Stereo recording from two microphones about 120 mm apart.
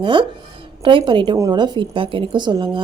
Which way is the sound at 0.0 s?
45° right (ahead or behind).